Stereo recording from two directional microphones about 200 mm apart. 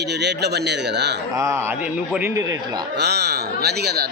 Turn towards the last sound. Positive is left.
turn(degrees=-55)  # may be behind; listen again after turning